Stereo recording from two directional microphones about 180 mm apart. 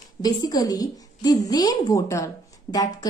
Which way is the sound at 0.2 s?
20° left (ahead or behind).